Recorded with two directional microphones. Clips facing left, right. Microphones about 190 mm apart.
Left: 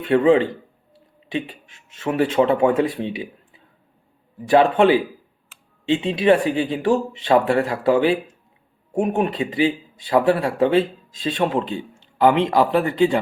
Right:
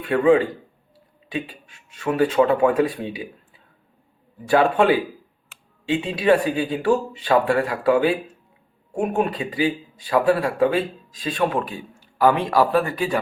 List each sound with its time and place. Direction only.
0.0 s speech: 25° left (ahead or behind)
4.4 s speech: 25° left (ahead or behind)